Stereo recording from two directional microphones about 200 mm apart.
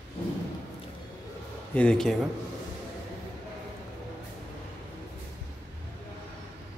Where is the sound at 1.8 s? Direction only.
5° left (ahead or behind).